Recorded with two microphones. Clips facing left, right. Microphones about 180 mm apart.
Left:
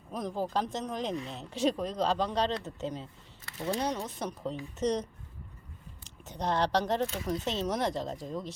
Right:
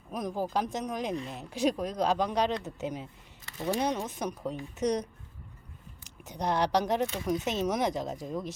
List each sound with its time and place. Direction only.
0.1 s speech: 15° right (ahead or behind)
6.2 s speech: 15° right (ahead or behind)